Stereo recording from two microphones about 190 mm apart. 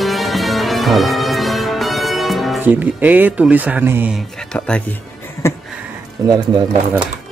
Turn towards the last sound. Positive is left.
turn(degrees=-20)  # may be behind; listen again after turning